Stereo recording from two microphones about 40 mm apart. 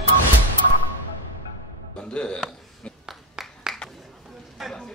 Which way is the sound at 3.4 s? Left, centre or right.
Centre.